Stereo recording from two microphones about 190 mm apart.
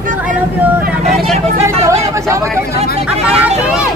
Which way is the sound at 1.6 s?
15° right (ahead or behind).